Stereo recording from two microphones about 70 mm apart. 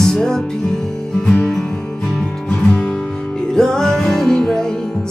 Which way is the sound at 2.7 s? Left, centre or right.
Left.